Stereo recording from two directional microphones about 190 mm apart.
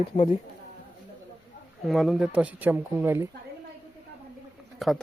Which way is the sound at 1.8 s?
Centre (ahead or behind).